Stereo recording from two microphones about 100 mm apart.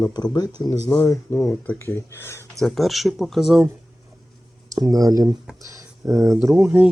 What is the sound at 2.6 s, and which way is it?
Speech, centre (ahead or behind).